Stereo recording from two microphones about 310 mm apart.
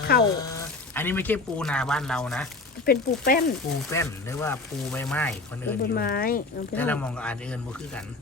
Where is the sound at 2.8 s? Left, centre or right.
Left.